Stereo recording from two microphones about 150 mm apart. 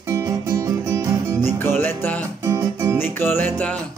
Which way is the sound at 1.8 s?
15° left (ahead or behind).